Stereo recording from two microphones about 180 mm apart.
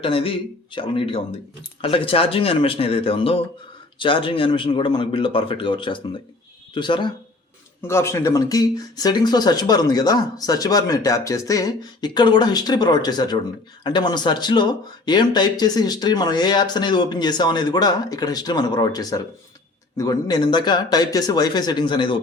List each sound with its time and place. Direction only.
0.0 s speech: 30° left (ahead or behind)
7.8 s speech: 15° left (ahead or behind)